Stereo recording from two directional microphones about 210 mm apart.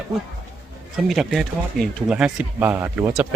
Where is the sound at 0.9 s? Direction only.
Centre (ahead or behind).